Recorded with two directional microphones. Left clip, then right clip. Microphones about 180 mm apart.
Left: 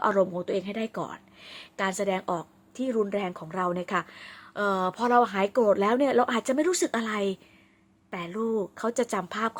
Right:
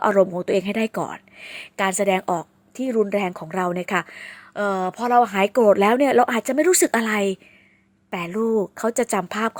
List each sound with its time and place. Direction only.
0.0 s a woman's voice: 30° right (ahead or behind)